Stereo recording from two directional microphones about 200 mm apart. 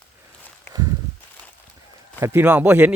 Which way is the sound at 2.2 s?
10° right (ahead or behind).